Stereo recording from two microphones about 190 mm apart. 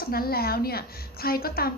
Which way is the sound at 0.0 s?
50° left (ahead or behind).